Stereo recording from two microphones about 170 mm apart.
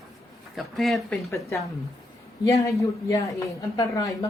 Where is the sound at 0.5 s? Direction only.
Centre (ahead or behind).